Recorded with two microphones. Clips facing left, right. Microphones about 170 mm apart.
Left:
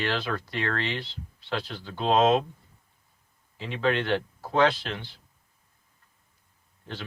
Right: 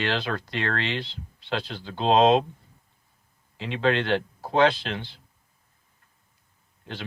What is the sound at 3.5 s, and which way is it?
Speech, 20° right (ahead or behind).